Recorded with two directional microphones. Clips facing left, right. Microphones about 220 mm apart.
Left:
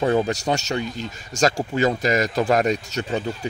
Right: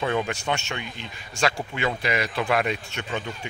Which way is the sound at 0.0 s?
40° left (ahead or behind).